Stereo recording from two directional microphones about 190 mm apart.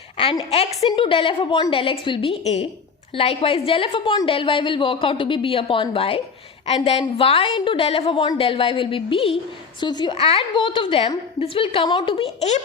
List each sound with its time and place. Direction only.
0.5 s a woman's voice: 35° left (ahead or behind)